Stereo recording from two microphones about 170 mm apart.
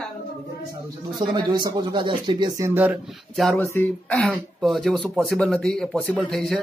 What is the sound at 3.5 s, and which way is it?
Speech, 10° left (ahead or behind).